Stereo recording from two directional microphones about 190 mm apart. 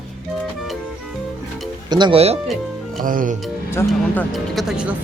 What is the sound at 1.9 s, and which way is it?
Speech, 25° right (ahead or behind).